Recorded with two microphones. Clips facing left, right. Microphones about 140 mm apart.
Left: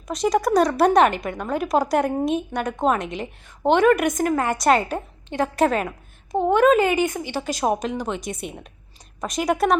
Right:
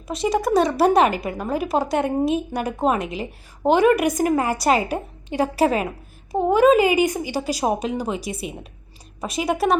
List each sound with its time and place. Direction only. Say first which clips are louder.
0.1 s a woman's voice: even; centre (ahead or behind)